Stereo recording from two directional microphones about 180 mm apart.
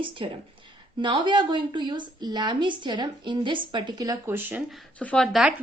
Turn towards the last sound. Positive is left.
turn(degrees=-5)  # may be behind; listen again after turning